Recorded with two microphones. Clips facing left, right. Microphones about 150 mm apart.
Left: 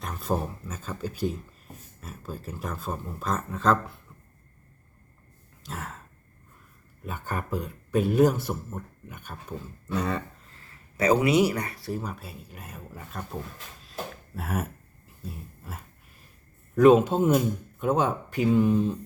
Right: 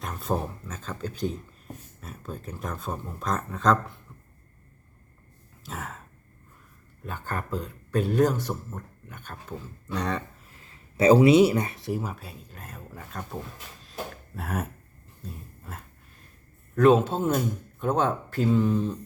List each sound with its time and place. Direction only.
0.0 s speech: centre (ahead or behind)
5.6 s sigh: centre (ahead or behind)
7.0 s speech: 10° left (ahead or behind)
10.6 s speech: 25° right (ahead or behind)
11.9 s speech: 5° right (ahead or behind)
13.8 s a sound: centre (ahead or behind)
15.2 s dog: 5° left (ahead or behind)
16.7 s speech: 10° left (ahead or behind)